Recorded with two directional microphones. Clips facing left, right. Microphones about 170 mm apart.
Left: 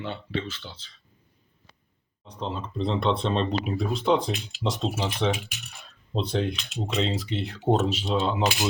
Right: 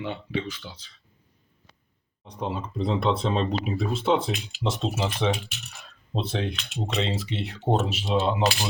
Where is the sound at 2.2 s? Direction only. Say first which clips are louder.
Right 2 dB; 10° right (ahead or behind).